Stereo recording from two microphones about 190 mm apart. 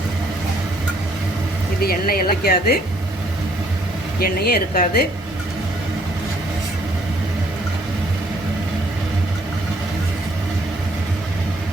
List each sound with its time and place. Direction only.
1.8 s speech: 50° left (ahead or behind)
4.2 s speech: 55° left (ahead or behind)